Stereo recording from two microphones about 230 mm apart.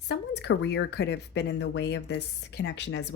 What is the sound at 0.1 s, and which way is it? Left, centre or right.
Speech, left.